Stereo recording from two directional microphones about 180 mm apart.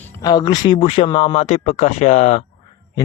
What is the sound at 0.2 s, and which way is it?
A man's voice, 25° left (ahead or behind).